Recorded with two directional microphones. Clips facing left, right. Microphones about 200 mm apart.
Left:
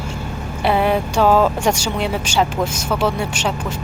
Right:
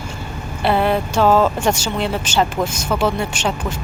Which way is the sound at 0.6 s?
10° left (ahead or behind).